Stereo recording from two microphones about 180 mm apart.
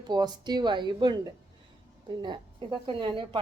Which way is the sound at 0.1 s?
25° right (ahead or behind).